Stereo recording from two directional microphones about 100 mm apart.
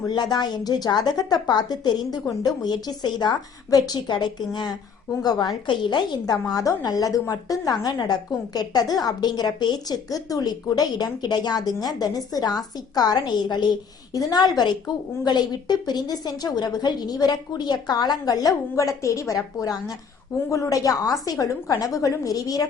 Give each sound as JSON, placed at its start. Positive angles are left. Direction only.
{"t": 0.1, "sound": "a woman's voice", "side_deg": 45}